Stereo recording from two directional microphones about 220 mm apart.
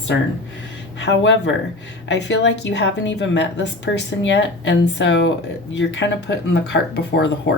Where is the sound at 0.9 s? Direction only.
55° left (ahead or behind).